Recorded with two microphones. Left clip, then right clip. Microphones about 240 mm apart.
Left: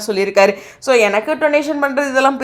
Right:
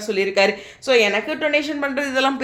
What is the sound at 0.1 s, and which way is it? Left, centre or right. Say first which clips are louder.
A woman's voice: left 5 dB; left.